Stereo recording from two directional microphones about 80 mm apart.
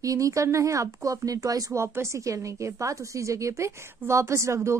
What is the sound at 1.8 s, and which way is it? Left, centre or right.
A woman's voice, right.